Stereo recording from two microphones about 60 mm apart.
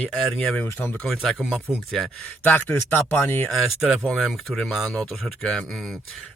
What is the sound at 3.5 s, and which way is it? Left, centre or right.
Speech, centre.